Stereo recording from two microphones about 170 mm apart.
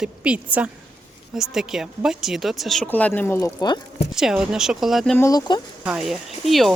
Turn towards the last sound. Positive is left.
turn(degrees=0)  # may be behind; listen again after turning